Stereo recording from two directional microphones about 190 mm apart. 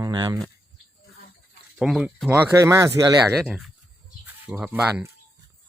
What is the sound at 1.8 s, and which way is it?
Speech, centre (ahead or behind).